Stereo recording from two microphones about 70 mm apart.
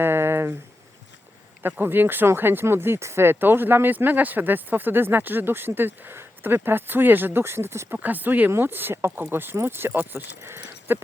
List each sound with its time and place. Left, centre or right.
0.0 s a sound: right
1.8 s speech: right
7.9 s speech: right